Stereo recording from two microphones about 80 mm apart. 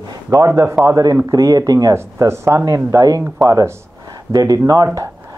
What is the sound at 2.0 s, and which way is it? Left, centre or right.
Speech, right.